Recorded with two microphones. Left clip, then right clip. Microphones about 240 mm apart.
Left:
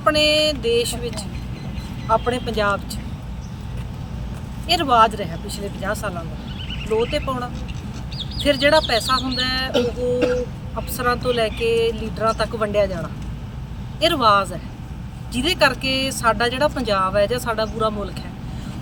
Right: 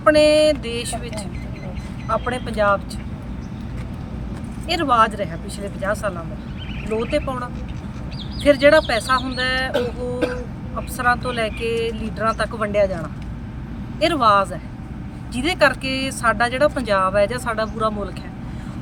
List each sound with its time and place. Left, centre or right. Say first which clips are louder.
0.0 s speech: right 3 dB; centre
4.7 s speech: left 1 dB; centre
8.4 s speech: right 3 dB; centre
9.7 s music: left 3 dB; right
10.9 s speech: even; centre
14.0 s speech: even; centre